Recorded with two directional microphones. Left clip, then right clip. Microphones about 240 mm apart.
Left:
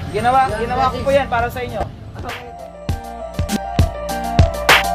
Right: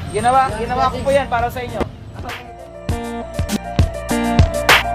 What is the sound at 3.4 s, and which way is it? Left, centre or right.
Music, centre.